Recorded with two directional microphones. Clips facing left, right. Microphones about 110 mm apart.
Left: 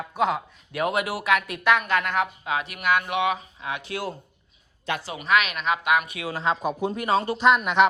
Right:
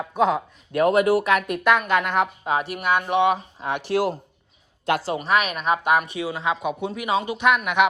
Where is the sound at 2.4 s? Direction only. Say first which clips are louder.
Right 2 dB; 35° right (ahead or behind).